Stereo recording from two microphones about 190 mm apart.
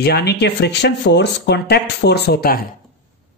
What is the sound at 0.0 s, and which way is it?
Speech, 60° left (ahead or behind).